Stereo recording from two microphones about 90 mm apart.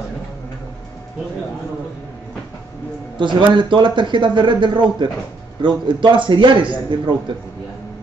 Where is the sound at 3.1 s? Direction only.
60° right (ahead or behind).